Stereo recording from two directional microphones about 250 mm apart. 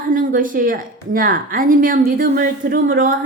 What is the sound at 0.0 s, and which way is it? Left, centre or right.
A woman's voice, right.